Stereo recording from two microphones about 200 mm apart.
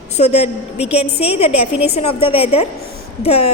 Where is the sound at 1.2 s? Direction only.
30° left (ahead or behind).